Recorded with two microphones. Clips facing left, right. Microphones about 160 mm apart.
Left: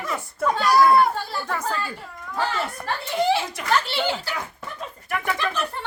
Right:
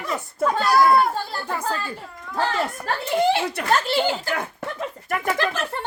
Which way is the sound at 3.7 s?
45° right (ahead or behind).